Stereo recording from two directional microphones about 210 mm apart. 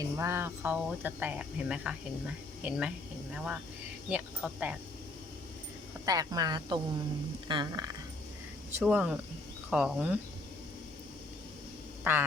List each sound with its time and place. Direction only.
0.0 s speech: 10° right (ahead or behind)
6.1 s speech: 15° right (ahead or behind)
8.8 s speech: 5° right (ahead or behind)
12.1 s speech: 10° right (ahead or behind)